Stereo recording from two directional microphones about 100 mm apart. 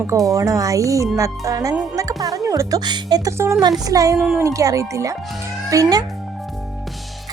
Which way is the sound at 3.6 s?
40° right (ahead or behind).